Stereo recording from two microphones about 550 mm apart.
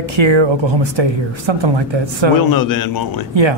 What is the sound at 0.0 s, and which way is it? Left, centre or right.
A man's voice, right.